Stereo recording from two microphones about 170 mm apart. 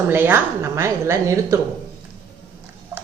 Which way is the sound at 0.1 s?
10° right (ahead or behind).